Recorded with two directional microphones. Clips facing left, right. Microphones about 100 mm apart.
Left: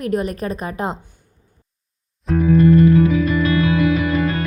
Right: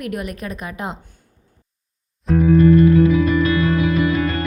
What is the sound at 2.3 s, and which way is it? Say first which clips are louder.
Music: right 2 dB; centre (ahead or behind).